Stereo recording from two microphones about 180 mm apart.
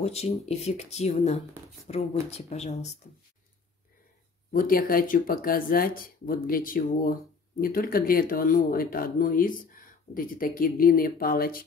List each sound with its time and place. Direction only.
0.0 s speech: 35° left (ahead or behind)
4.5 s speech: 50° left (ahead or behind)